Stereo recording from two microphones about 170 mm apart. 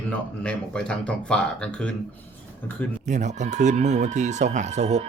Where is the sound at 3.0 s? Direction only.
45° right (ahead or behind).